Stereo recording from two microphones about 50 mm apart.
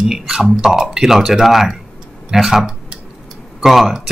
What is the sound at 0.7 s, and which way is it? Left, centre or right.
Speech, centre.